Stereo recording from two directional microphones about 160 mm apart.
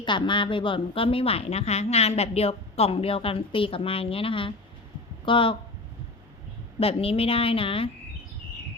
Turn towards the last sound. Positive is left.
turn(degrees=35)  # may be behind; listen again after turning